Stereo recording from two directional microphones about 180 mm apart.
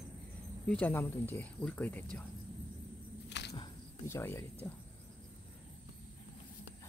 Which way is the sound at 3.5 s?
20° left (ahead or behind).